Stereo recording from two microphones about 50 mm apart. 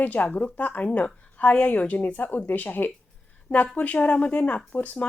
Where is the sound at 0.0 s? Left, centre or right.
Left.